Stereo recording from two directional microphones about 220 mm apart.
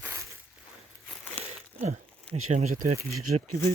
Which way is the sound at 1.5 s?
30° right (ahead or behind).